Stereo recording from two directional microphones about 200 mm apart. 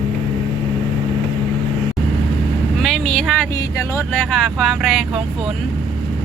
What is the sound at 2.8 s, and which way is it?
Speech, 5° left (ahead or behind).